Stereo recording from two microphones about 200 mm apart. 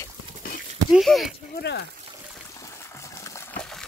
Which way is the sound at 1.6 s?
60° left (ahead or behind).